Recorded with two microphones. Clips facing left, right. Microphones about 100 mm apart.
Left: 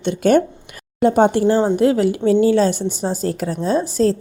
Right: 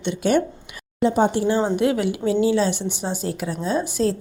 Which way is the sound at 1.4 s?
40° left (ahead or behind).